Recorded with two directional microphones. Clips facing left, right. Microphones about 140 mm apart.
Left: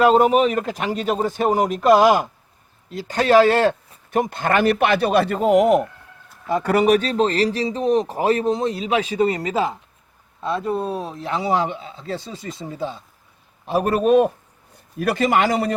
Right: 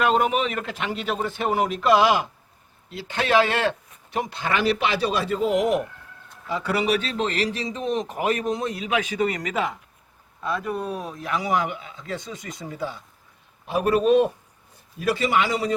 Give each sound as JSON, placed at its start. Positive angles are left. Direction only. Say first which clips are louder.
{"t": 0.0, "sound": "a man's voice", "louder": "left 7 dB", "side_deg": 35}
{"t": 13.7, "sound": "a man's voice", "louder": "left 2 dB", "side_deg": 40}